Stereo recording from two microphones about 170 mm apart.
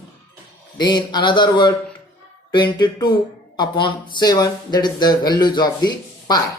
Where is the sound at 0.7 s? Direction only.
25° left (ahead or behind).